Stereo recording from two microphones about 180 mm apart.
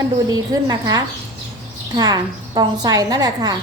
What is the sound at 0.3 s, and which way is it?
A woman's voice, 20° right (ahead or behind).